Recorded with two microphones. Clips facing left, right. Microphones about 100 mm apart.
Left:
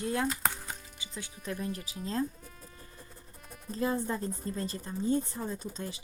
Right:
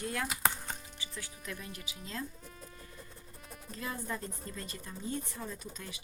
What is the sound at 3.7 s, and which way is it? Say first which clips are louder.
A woman's voice: left 8 dB; 30° left (ahead or behind).